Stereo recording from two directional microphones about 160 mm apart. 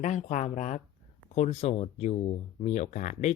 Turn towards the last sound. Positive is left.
turn(degrees=50)  # may be behind; listen again after turning